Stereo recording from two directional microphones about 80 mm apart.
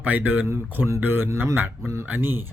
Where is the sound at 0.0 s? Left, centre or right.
Right.